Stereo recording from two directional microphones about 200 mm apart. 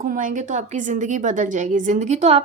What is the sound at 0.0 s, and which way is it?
A woman's voice, 40° right (ahead or behind).